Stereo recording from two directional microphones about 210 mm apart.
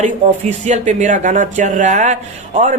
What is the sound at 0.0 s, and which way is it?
Speech, 35° right (ahead or behind).